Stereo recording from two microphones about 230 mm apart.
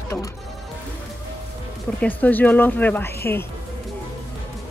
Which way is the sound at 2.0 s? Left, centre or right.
Centre.